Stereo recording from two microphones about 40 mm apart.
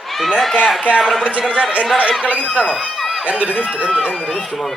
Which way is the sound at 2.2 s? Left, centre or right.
Right.